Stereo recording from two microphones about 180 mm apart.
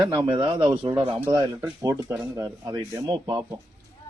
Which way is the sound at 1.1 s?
15° right (ahead or behind).